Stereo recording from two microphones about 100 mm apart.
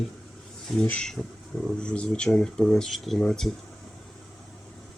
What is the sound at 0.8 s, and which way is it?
Speech, 15° left (ahead or behind).